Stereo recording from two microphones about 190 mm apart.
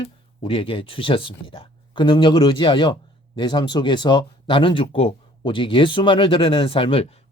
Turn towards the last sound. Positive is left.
turn(degrees=30)  # may be behind; listen again after turning